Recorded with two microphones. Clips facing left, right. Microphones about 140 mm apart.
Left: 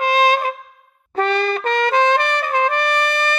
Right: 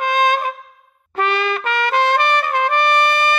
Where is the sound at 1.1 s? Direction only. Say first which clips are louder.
Left 1 dB; 40° left (ahead or behind).